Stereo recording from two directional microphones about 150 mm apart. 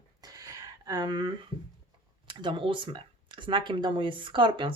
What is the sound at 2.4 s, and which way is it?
Speech, 35° right (ahead or behind).